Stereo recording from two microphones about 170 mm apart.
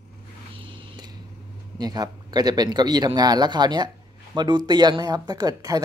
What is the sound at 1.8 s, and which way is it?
Speech, 25° right (ahead or behind).